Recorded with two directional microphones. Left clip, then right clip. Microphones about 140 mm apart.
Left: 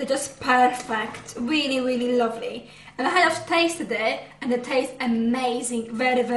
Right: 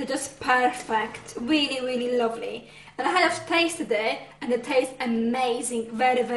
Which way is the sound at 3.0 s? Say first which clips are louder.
Left 2 dB; 20° right (ahead or behind).